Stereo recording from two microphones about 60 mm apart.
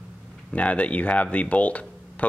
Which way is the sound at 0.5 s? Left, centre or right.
Left.